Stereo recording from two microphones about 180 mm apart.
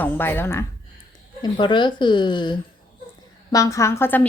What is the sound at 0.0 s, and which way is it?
Speech, 10° left (ahead or behind).